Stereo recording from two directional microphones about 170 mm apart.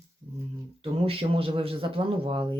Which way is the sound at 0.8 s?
35° right (ahead or behind).